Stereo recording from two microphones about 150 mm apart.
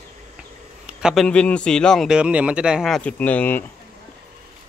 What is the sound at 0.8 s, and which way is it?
A man's voice, centre (ahead or behind).